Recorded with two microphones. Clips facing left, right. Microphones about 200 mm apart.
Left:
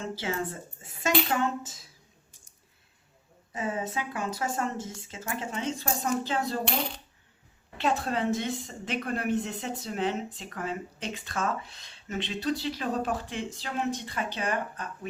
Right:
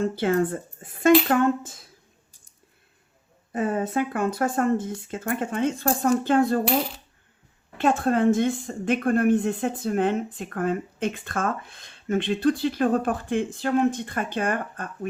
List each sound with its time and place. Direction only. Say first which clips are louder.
0.0 s speech: right 10 dB; 55° right (ahead or behind)
3.5 s a woman's voice: right 7 dB; 55° right (ahead or behind)
6.7 s coin: right 7 dB; 5° right (ahead or behind)
7.8 s a woman's voice: right 7 dB; 50° right (ahead or behind)